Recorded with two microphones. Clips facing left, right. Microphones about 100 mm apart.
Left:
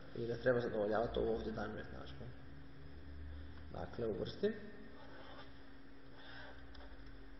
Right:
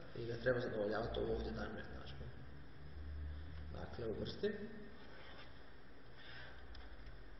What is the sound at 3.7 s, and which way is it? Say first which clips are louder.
Speech: left 4 dB; 30° left (ahead or behind).